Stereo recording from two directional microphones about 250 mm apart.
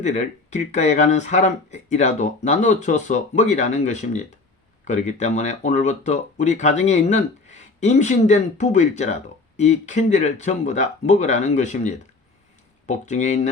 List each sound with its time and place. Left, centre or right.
0.0 s speech: left